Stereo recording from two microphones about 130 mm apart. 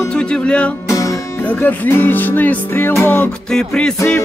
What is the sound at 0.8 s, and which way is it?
Music, 25° left (ahead or behind).